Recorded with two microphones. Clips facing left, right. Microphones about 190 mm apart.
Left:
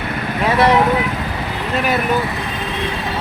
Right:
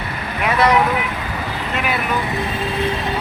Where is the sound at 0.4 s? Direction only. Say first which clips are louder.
Left 2 dB; 30° left (ahead or behind).